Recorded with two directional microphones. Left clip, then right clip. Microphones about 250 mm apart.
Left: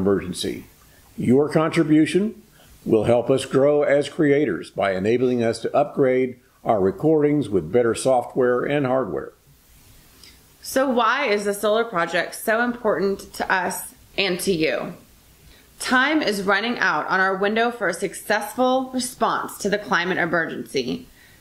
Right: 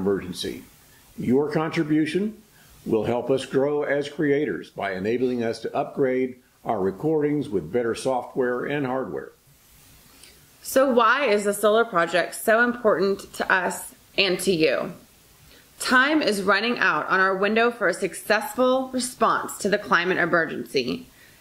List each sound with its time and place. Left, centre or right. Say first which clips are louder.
0.0 s speech: left 4 dB; centre
10.6 s a woman's voice: right 1 dB; right